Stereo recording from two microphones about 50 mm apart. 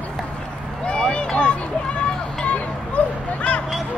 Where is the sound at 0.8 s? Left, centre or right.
Centre.